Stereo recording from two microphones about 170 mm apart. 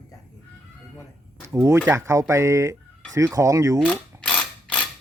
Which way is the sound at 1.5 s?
15° right (ahead or behind).